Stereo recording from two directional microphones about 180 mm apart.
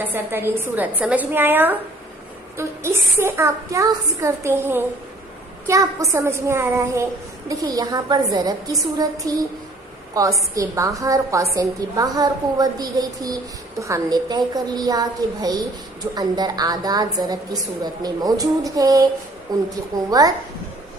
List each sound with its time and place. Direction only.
0.0 s a woman's voice: 10° right (ahead or behind)